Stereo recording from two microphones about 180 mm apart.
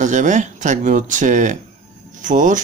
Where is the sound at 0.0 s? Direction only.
45° right (ahead or behind).